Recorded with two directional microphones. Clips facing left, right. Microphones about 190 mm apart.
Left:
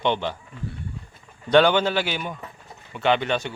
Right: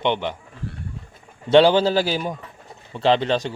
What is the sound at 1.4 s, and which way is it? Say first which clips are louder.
Speech: right 3 dB; 30° right (ahead or behind).